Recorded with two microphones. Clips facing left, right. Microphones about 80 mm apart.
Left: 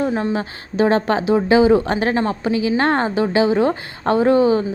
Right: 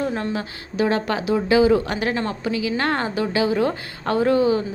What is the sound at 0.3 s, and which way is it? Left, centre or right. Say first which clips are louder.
Speech: left 4 dB; left.